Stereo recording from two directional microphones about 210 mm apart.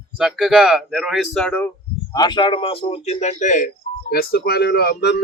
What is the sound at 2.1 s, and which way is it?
A man's voice, 20° left (ahead or behind).